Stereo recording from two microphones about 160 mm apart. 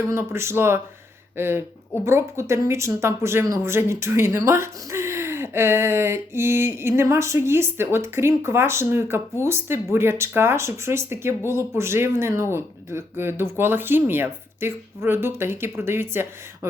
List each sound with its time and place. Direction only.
0.0 s speech: 15° right (ahead or behind)